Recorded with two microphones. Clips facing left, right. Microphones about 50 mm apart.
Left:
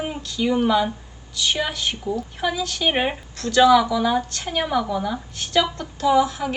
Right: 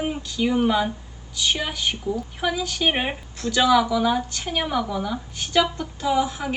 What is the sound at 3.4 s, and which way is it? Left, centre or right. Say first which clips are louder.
Speech: left 5 dB; centre.